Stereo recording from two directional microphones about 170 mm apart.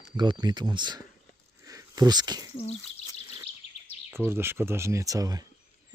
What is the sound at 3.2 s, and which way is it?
Bird vocalization, 20° right (ahead or behind).